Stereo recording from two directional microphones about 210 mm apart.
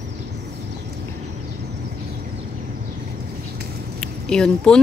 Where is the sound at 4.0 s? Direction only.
5° left (ahead or behind).